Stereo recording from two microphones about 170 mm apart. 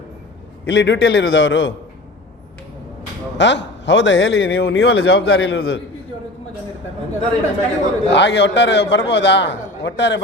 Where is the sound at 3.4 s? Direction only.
90° left; by 5.6 s 75° left (ahead or behind).